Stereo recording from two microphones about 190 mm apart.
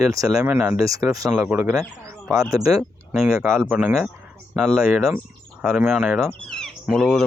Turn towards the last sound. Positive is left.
turn(degrees=0)  # may be behind; listen again after turning